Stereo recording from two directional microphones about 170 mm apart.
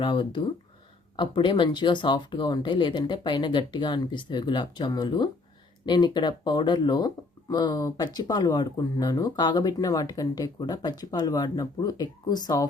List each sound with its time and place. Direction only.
0.0 s speech: 30° left (ahead or behind)